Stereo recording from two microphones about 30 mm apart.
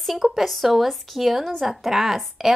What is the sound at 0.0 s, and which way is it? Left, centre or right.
A woman's voice, centre.